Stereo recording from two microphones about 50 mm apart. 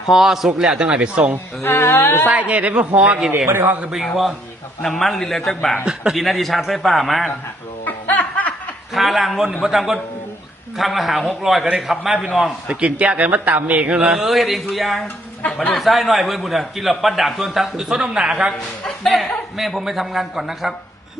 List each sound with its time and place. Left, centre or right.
0.1 s a man's voice: centre
1.6 s speech: left
2.3 s speech: right
3.9 s a man's voice: centre
5.8 s a man's voice: centre
6.1 s a man's voice: centre
7.9 s snicker: left
8.9 s a man's voice: centre
12.6 s speech: right
14.2 s a man's voice: centre
18.9 s a man's voice: centre